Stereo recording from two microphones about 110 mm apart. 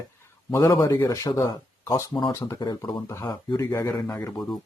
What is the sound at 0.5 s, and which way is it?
Speech, 30° left (ahead or behind).